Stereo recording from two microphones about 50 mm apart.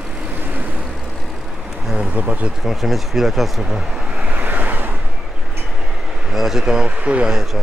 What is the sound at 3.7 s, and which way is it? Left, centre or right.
Vehicle, centre.